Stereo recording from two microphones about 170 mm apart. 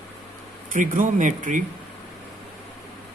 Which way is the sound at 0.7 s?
50° right (ahead or behind).